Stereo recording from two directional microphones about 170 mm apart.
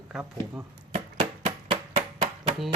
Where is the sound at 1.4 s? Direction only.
45° right (ahead or behind).